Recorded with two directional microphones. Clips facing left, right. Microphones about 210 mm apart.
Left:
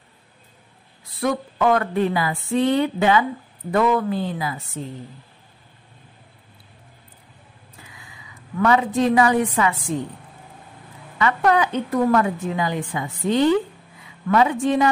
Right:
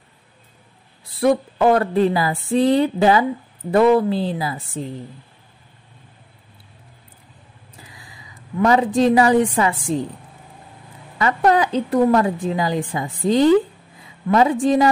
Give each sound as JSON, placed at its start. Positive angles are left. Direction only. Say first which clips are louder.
{"t": 1.2, "sound": "a woman's voice", "louder": "right 5 dB", "side_deg": -30}
{"t": 7.8, "sound": "a sound", "louder": "right 2 dB", "side_deg": -35}
{"t": 8.6, "sound": "a woman's voice", "louder": "right 3 dB", "side_deg": -30}
{"t": 11.1, "sound": "a woman's voice", "louder": "right 2 dB", "side_deg": -35}